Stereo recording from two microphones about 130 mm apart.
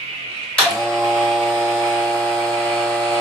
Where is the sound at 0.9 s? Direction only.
Centre (ahead or behind).